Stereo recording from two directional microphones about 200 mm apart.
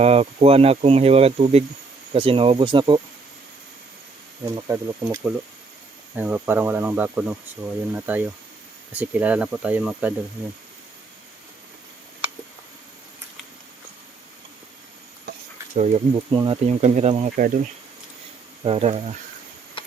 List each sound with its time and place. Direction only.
0.0 s speech: 30° right (ahead or behind)
4.4 s speech: 15° right (ahead or behind)
15.3 s speech: 35° right (ahead or behind)
16.6 s speech: 35° right (ahead or behind)
18.6 s speech: 30° right (ahead or behind)